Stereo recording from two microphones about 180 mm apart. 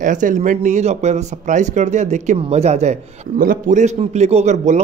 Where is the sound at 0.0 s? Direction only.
45° right (ahead or behind).